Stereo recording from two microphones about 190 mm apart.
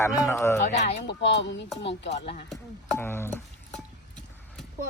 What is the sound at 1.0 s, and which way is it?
Speech, 70° left (ahead or behind).